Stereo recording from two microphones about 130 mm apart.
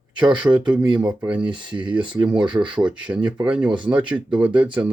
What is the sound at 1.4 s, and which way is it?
Speech, 35° right (ahead or behind).